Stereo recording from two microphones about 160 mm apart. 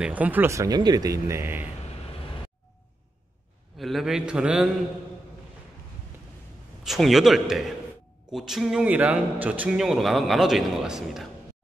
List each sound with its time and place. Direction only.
0.0 s speech: 10° right (ahead or behind)
3.7 s a man's voice: centre (ahead or behind)
6.8 s a man's voice: centre (ahead or behind)